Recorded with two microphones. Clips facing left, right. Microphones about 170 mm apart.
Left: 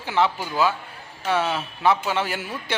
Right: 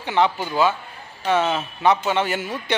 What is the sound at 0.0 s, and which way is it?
A man's voice, 5° left (ahead or behind).